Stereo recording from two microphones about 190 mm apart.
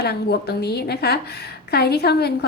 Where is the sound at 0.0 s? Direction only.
55° left (ahead or behind).